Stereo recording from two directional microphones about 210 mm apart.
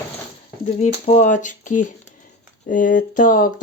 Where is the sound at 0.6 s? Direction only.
35° left (ahead or behind).